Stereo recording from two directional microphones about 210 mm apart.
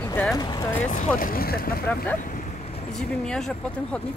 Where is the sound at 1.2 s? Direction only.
45° left (ahead or behind).